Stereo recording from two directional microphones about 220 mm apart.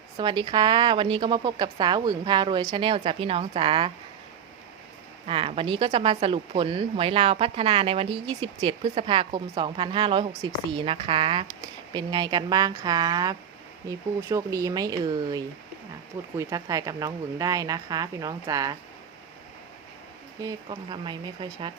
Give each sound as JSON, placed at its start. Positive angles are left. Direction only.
{"t": 0.2, "sound": "speech", "side_deg": -20}
{"t": 5.2, "sound": "speech", "side_deg": -25}
{"t": 20.4, "sound": "speech", "side_deg": -20}